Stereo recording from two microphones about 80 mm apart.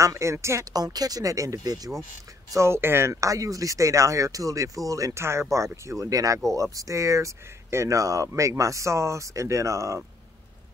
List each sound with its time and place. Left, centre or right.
0.0 s speech: right
0.7 s speech: right
2.5 s speech: right